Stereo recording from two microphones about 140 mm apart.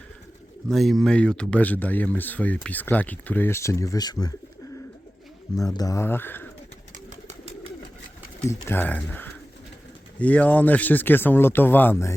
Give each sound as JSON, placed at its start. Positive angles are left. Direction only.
{"t": 0.7, "sound": "speech", "side_deg": 0}
{"t": 5.5, "sound": "speech", "side_deg": 25}
{"t": 8.4, "sound": "speech", "side_deg": 15}